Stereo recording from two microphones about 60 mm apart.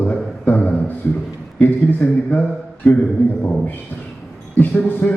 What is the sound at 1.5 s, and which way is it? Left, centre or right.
Speech, left.